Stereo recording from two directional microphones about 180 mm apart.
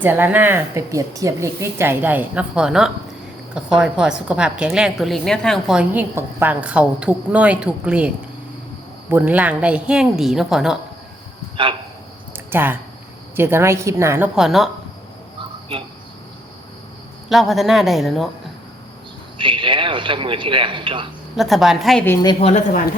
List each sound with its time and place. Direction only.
0.0 s a woman's voice: 10° right (ahead or behind)
11.6 s a man's voice: 30° right (ahead or behind)
12.5 s speech: 10° right (ahead or behind)
14.3 s a woman's voice: centre (ahead or behind)
17.2 s a woman's voice: centre (ahead or behind)
19.4 s a man's voice: 25° right (ahead or behind)
21.3 s a woman's voice: centre (ahead or behind)
22.0 s a woman's voice: 15° left (ahead or behind)
22.3 s a woman's voice: 35° left (ahead or behind)